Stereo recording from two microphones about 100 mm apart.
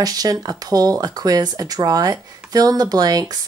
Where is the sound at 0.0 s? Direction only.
40° right (ahead or behind).